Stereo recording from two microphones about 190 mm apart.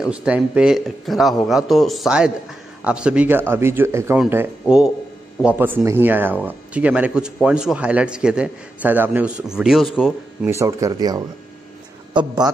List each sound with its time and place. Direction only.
0.0 s a man's voice: 5° right (ahead or behind)
10.5 s a man's voice: 15° right (ahead or behind)